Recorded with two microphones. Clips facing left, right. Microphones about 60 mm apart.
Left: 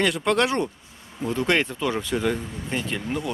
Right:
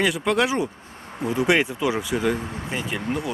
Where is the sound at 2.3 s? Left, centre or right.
Right.